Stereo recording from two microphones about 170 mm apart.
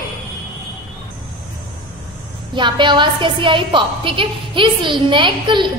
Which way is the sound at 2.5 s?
25° right (ahead or behind).